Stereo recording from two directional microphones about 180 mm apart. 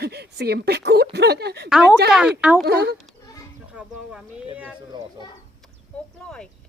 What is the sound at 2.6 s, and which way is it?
Speech, 60° right (ahead or behind).